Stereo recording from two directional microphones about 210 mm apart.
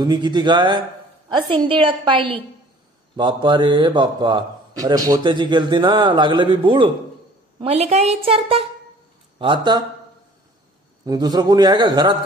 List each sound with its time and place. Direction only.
0.0 s a man's voice: 20° right (ahead or behind)
11.1 s a man's voice: 20° right (ahead or behind)